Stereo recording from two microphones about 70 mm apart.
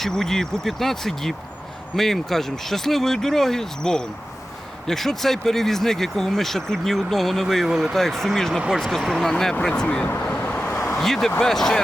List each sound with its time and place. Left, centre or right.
0.0 s speech: centre
10.5 s vehicle: left
10.9 s speech: centre